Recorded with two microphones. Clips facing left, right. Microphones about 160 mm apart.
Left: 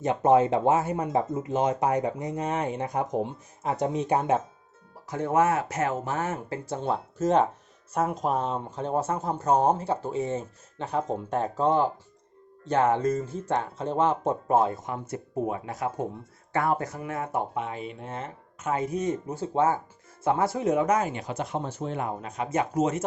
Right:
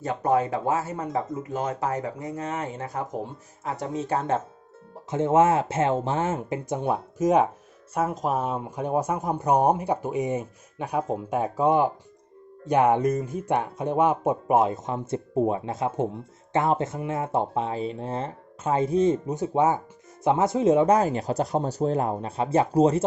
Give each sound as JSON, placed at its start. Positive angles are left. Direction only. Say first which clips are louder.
{"t": 0.0, "sound": "speech", "louder": "left 3 dB", "side_deg": 20}
{"t": 5.1, "sound": "speech", "louder": "right 4 dB", "side_deg": -25}